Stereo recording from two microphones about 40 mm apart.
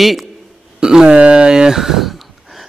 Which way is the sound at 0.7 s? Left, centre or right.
Centre.